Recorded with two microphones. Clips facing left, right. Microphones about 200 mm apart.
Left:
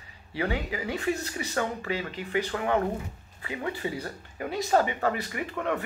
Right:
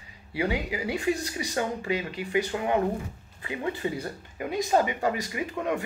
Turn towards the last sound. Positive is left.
turn(degrees=-15)  # may be behind; listen again after turning